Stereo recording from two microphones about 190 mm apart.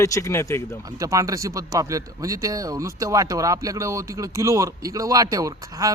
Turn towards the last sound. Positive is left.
turn(degrees=-15)  # may be behind; listen again after turning